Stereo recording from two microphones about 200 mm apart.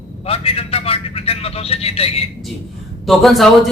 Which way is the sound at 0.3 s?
30° left (ahead or behind).